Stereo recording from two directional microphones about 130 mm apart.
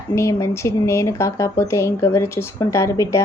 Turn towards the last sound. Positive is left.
turn(degrees=25)  # may be behind; listen again after turning